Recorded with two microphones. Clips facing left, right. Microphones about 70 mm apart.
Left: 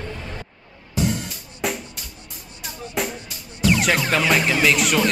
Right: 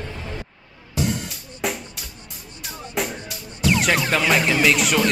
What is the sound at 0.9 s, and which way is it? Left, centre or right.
Music, centre.